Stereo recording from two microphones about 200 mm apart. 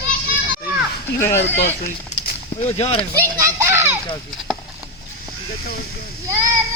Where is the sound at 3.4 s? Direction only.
15° right (ahead or behind).